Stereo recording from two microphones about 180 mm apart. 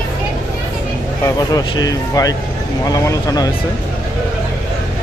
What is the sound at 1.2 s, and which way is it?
Speech, 20° left (ahead or behind).